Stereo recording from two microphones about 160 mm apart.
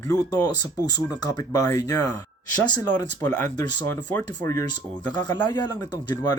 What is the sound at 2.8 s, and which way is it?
Speech, 15° left (ahead or behind).